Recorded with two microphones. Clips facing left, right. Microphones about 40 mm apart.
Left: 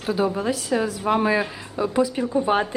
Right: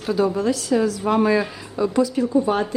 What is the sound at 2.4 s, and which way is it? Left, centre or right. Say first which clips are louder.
Speech: even; left.